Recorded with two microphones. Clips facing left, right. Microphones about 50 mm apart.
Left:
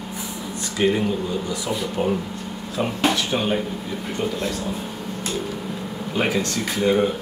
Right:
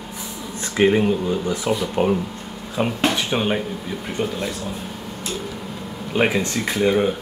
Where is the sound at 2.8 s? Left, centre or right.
Right.